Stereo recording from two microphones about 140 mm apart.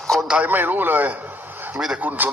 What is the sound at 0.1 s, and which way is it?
A man's voice, 5° right (ahead or behind).